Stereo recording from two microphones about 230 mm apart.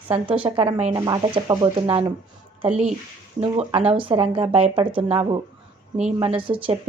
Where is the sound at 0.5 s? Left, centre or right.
Right.